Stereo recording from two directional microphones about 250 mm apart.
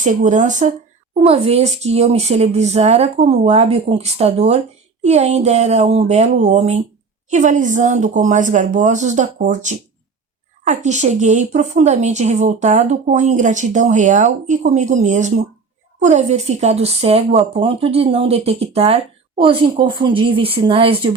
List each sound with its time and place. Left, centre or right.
0.0 s a woman's voice: right